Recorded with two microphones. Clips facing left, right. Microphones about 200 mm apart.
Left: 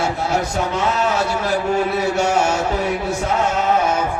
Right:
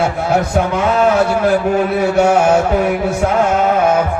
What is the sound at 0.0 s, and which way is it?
A man's voice, 55° right (ahead or behind).